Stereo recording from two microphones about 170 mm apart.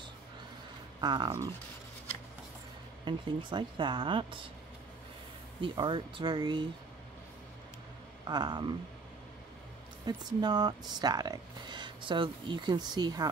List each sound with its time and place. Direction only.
1.0 s speech: 25° right (ahead or behind)
3.1 s speech: 30° right (ahead or behind)
5.6 s speech: 30° right (ahead or behind)
8.3 s speech: 25° right (ahead or behind)
10.0 s speech: 25° right (ahead or behind)